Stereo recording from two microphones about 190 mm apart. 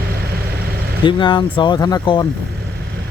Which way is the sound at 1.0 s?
25° left (ahead or behind).